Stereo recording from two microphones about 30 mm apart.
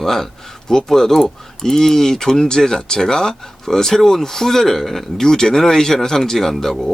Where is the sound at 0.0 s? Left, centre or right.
Centre.